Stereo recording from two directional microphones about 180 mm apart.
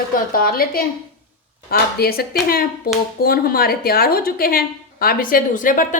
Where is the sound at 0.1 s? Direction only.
55° left (ahead or behind).